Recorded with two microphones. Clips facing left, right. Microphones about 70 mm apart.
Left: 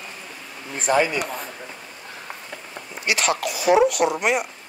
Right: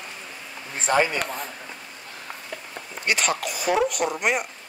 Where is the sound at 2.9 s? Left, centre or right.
Centre.